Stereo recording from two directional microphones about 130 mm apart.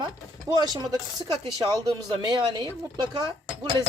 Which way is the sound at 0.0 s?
30° right (ahead or behind).